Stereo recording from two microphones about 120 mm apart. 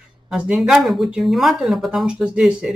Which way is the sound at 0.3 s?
5° right (ahead or behind).